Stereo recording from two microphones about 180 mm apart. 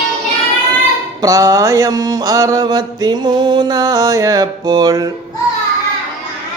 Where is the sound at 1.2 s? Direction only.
20° right (ahead or behind).